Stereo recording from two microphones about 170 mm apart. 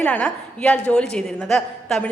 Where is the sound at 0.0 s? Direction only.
5° left (ahead or behind).